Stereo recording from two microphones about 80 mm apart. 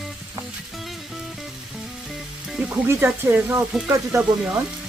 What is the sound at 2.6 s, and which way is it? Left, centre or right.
Speech, right.